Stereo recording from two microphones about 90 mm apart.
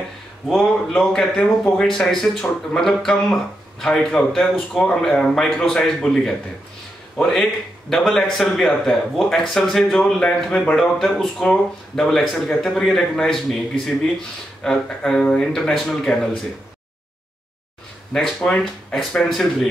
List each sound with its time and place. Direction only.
0.5 s speech: 5° left (ahead or behind)
14.6 s speech: 5° left (ahead or behind)
18.1 s speech: 5° left (ahead or behind)